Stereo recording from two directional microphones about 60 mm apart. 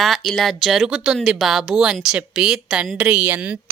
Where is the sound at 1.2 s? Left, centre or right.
Centre; by 3.6 s right.